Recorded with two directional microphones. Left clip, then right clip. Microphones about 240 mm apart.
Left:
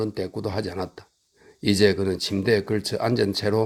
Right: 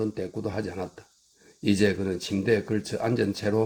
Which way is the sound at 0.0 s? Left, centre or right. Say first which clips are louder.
Left 3 dB; left.